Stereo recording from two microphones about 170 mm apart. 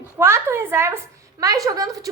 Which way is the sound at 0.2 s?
15° right (ahead or behind).